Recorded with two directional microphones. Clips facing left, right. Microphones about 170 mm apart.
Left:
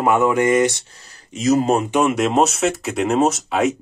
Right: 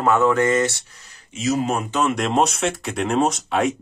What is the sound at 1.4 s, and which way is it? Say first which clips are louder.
Speech: left 5 dB; 40° left (ahead or behind).